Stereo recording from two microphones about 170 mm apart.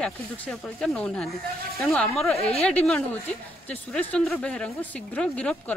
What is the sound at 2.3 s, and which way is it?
Speech, 35° left (ahead or behind).